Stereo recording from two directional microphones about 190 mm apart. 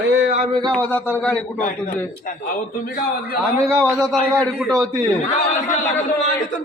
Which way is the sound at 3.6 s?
15° right (ahead or behind).